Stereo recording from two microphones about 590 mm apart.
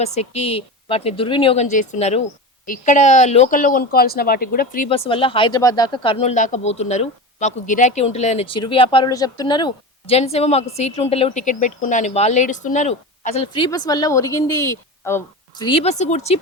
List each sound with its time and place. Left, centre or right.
0.0 s speech: centre